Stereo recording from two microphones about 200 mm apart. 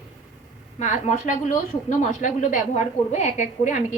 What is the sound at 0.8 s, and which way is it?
Speech, 35° left (ahead or behind).